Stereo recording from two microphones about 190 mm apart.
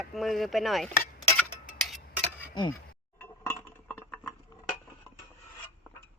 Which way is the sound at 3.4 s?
10° left (ahead or behind).